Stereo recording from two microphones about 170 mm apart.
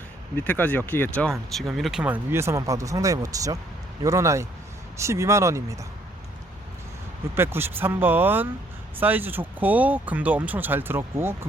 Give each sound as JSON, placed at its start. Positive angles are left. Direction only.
{"t": 0.3, "sound": "speech", "side_deg": 10}
{"t": 7.3, "sound": "speech", "side_deg": -15}